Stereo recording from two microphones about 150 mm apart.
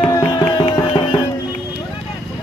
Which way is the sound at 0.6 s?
35° left (ahead or behind).